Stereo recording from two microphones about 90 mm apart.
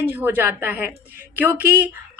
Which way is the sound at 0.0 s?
20° right (ahead or behind).